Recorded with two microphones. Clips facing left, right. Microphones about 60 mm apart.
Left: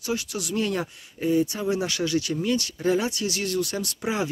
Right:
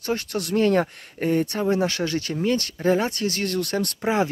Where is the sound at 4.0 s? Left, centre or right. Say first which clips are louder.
Right 5 dB; right.